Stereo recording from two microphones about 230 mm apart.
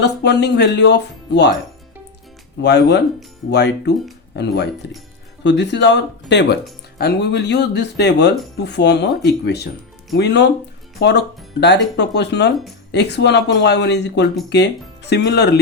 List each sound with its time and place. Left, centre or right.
0.0 s speech: left
2.6 s speech: left